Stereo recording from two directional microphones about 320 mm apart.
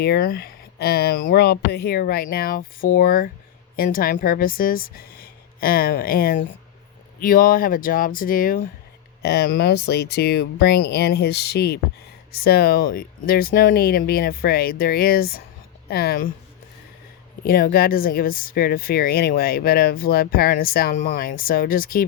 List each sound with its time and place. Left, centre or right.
0.0 s speech: left
17.4 s speech: left